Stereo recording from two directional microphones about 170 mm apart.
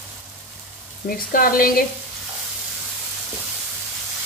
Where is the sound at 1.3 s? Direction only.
55° left (ahead or behind).